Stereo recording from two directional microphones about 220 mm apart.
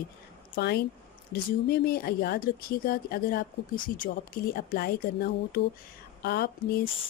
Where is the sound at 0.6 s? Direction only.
45° left (ahead or behind).